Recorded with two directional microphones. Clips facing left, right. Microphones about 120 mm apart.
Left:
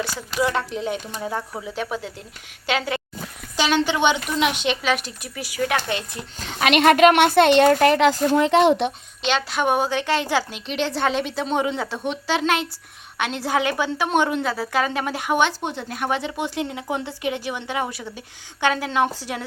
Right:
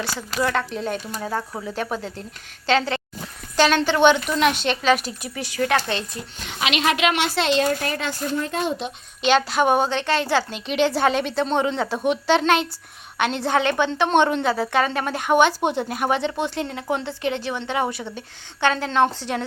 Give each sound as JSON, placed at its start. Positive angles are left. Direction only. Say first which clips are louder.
{"t": 0.3, "sound": "a woman's voice", "louder": "left 1 dB", "side_deg": 10}
{"t": 1.6, "sound": "a woman's voice", "louder": "right 1 dB", "side_deg": 5}
{"t": 6.4, "sound": "a woman's voice", "louder": "left 6 dB", "side_deg": 50}
{"t": 9.2, "sound": "a woman's voice", "louder": "right 4 dB", "side_deg": 0}
{"t": 10.5, "sound": "a woman's voice", "louder": "right 4 dB", "side_deg": 0}
{"t": 15.9, "sound": "speech", "louder": "right 3 dB", "side_deg": -10}
{"t": 16.4, "sound": "a woman's voice", "louder": "right 1 dB", "side_deg": 15}
{"t": 17.7, "sound": "a woman's voice", "louder": "right 3 dB", "side_deg": 0}